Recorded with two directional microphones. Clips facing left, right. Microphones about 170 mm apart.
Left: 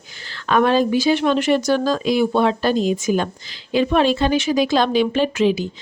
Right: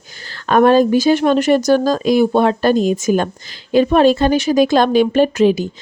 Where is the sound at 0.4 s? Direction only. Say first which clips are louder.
Right 5 dB; 45° right (ahead or behind).